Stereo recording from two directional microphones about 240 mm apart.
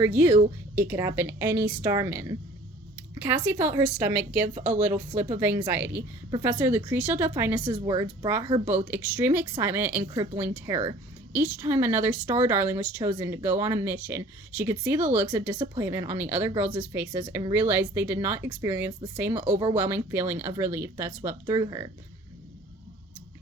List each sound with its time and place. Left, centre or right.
0.0 s a woman's voice: centre
5.3 s a woman's voice: centre
15.5 s speech: right
15.8 s a woman's voice: centre
19.5 s speech: centre
19.7 s a woman's voice: centre